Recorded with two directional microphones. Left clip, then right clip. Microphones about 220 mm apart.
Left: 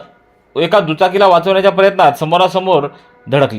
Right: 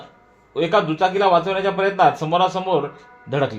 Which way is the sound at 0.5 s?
35° left (ahead or behind).